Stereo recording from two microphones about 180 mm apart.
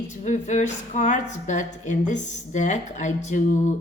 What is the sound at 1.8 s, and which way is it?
Speech, 40° left (ahead or behind).